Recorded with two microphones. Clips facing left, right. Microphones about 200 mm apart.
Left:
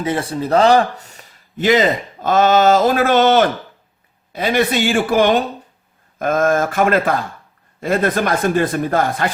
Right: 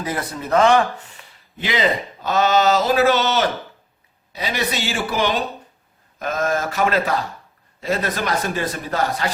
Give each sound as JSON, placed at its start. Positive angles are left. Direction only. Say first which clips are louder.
{"t": 0.0, "sound": "speech", "louder": "left 6 dB", "side_deg": 30}